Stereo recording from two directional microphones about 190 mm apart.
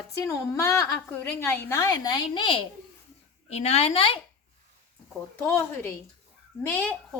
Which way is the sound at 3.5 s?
35° left (ahead or behind).